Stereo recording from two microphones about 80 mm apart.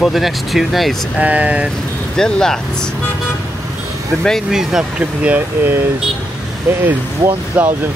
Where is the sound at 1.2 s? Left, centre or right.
Centre.